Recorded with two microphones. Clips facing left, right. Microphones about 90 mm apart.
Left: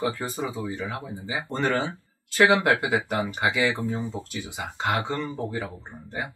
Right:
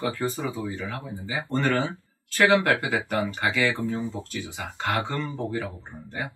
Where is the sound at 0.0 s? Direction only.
15° left (ahead or behind).